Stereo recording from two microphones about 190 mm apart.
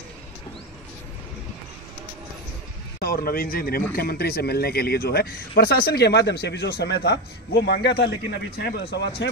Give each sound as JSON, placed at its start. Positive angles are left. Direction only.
{"t": 3.0, "sound": "speech", "side_deg": 50}